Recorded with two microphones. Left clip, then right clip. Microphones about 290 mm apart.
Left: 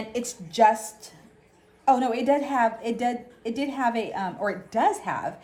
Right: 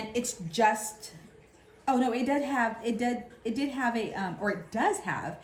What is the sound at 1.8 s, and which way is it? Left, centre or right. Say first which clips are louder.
A woman's voice: left 6 dB; left.